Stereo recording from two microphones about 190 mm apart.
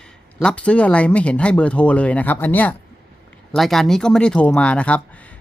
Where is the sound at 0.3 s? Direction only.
5° left (ahead or behind).